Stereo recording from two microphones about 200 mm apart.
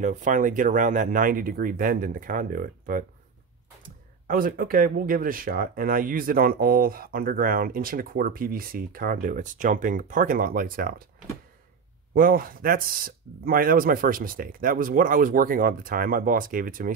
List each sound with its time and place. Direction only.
0.0 s speech: 40° right (ahead or behind)
12.1 s speech: 45° right (ahead or behind)